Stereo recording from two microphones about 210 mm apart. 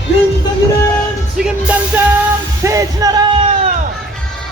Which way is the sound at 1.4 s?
5° right (ahead or behind).